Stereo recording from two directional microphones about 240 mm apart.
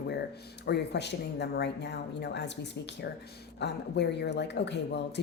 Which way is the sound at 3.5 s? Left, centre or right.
Left.